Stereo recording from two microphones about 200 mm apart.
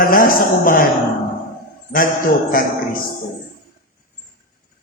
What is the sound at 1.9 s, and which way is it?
A man's voice, 45° left (ahead or behind).